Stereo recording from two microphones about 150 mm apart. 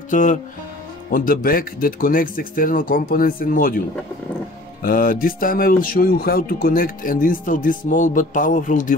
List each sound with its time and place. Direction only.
0.1 s music: 60° left (ahead or behind)
1.1 s speech: 75° left (ahead or behind)
4.8 s speech: 70° left (ahead or behind)